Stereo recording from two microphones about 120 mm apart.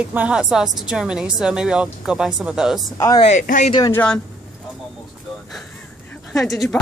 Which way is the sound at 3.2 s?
80° left.